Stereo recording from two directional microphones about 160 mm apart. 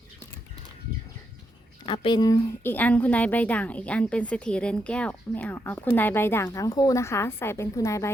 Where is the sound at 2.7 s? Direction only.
10° left (ahead or behind).